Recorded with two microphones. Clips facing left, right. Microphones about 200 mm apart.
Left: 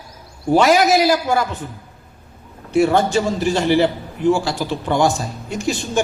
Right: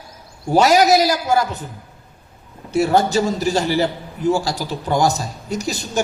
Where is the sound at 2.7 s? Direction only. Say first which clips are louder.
Left 1 dB; 40° right (ahead or behind).